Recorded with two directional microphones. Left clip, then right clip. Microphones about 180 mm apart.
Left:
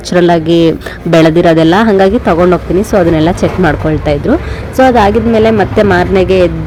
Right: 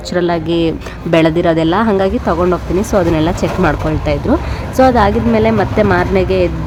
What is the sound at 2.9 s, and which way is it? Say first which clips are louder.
Speech: left 4 dB; 15° left (ahead or behind).